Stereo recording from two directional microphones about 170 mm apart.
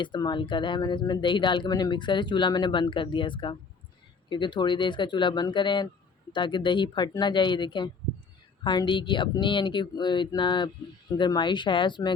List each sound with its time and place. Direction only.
0.0 s speech: 25° left (ahead or behind)